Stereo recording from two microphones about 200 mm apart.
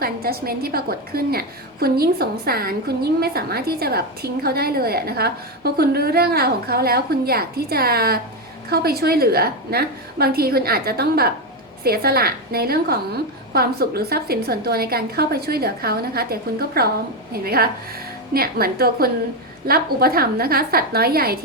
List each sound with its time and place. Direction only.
0.0 s a woman's voice: 50° right (ahead or behind)